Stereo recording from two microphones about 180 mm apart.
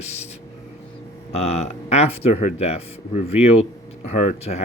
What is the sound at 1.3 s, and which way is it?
Speech, 35° left (ahead or behind).